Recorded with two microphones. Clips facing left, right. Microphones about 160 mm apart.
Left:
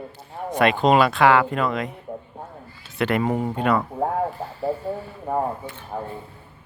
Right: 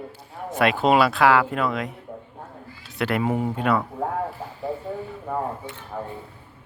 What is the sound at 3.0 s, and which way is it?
Speech, 5° right (ahead or behind).